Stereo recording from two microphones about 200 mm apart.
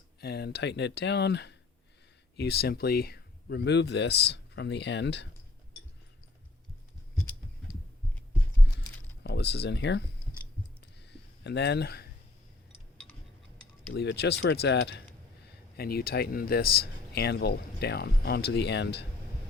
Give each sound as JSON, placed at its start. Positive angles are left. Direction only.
{"t": 0.2, "sound": "speech", "side_deg": 50}
{"t": 9.2, "sound": "speech", "side_deg": 55}
{"t": 11.0, "sound": "a sound", "side_deg": 60}
{"t": 13.9, "sound": "speech", "side_deg": 55}